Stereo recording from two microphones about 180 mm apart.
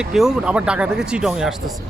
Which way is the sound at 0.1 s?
5° right (ahead or behind).